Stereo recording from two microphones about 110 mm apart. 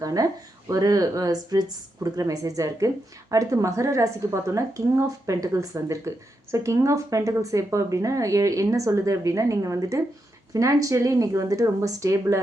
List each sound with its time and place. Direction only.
0.0 s a woman's voice: 35° right (ahead or behind)